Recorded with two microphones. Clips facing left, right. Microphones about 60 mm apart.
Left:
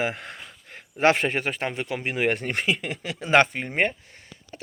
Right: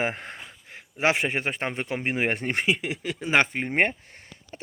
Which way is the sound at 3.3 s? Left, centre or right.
Centre.